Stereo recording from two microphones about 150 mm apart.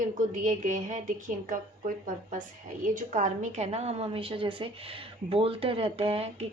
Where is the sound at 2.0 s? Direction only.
60° right (ahead or behind).